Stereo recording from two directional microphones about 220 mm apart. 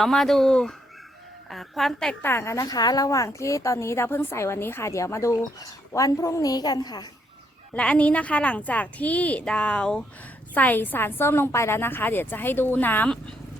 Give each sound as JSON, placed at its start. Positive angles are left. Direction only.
{"t": 0.0, "sound": "a woman's voice", "side_deg": 0}
{"t": 7.7, "sound": "a woman's voice", "side_deg": 5}